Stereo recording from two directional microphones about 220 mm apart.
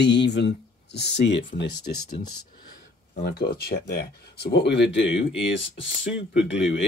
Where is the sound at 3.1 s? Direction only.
45° left (ahead or behind).